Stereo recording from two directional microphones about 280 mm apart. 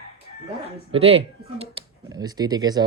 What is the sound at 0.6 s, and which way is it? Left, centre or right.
Speech, right.